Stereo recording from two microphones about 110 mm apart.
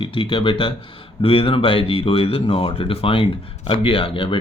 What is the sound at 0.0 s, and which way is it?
Speech, 50° left (ahead or behind).